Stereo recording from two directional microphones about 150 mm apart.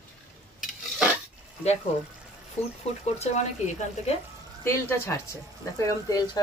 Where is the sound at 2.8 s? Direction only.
45° left (ahead or behind).